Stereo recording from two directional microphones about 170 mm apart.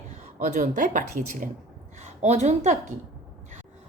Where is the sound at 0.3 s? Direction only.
50° right (ahead or behind).